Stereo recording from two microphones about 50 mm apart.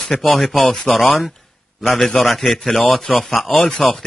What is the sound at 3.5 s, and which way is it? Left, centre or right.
Speech, left.